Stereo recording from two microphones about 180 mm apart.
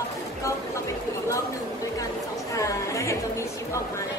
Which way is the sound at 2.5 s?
15° left (ahead or behind).